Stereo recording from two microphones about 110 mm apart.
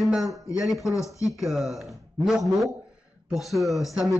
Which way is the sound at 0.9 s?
30° left (ahead or behind).